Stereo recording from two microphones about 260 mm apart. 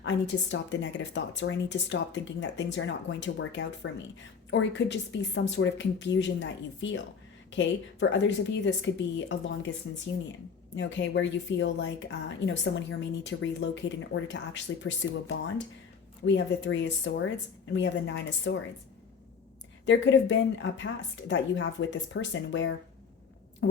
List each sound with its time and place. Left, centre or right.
0.0 s a woman's voice: left
10.8 s a woman's voice: left
19.8 s a woman's voice: left